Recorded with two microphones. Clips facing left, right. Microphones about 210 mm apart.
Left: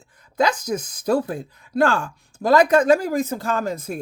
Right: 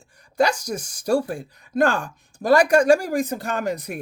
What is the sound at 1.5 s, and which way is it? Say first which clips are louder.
Speech: left 1 dB; 15° right (ahead or behind).